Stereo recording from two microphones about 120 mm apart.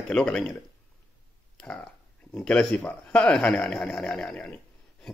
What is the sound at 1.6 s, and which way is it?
Speech, 10° left (ahead or behind).